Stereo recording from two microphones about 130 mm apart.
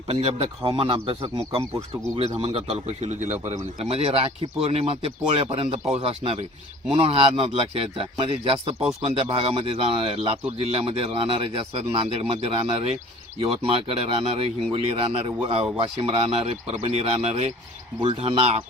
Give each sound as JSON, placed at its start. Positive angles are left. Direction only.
{"t": 0.1, "sound": "a man's voice", "side_deg": -50}
{"t": 3.5, "sound": "a man's voice", "side_deg": -50}